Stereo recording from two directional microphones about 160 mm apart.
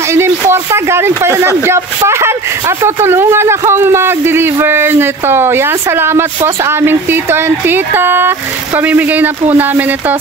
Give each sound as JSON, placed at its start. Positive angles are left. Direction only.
{"t": 0.1, "sound": "speech", "side_deg": -15}